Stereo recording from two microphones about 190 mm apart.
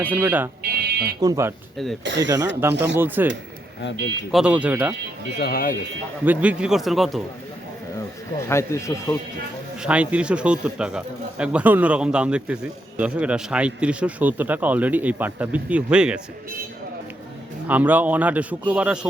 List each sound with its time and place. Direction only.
0.0 s speech: 10° right (ahead or behind)
0.6 s a sound: 55° right (ahead or behind)
1.2 s speech: 15° right (ahead or behind)
2.0 s speech: 70° right (ahead or behind)
3.0 s speech: 10° right (ahead or behind)
5.4 s speech: 50° left (ahead or behind)
6.2 s speech: 10° right (ahead or behind)
8.4 s speech: 15° left (ahead or behind)
9.8 s speech: 5° right (ahead or behind)
17.7 s speech: 10° right (ahead or behind)